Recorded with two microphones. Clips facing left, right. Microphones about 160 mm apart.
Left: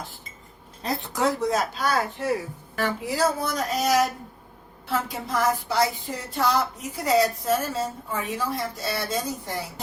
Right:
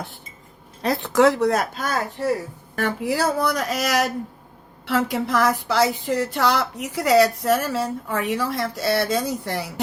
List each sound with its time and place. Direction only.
0.8 s speech: 75° right (ahead or behind); by 2.3 s 45° right (ahead or behind)
2.7 s speech: 55° right (ahead or behind); by 9.8 s 75° right (ahead or behind)